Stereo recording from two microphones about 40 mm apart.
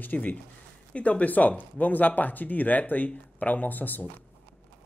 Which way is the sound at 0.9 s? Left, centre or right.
Left.